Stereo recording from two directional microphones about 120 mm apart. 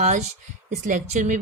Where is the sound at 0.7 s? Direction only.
90° right.